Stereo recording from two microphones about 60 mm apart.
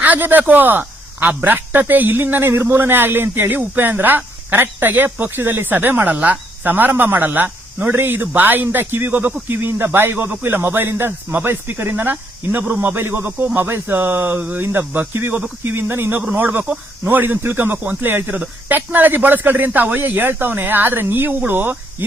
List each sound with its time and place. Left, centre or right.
0.0 s a man's voice: right